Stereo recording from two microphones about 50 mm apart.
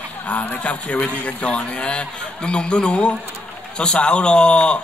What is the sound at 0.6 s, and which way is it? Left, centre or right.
A man's voice, left.